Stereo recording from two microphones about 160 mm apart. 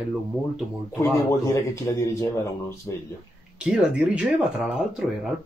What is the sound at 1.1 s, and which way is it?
Speech, 20° left (ahead or behind).